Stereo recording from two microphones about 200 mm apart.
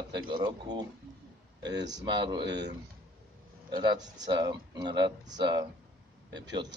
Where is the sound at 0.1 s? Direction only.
20° right (ahead or behind).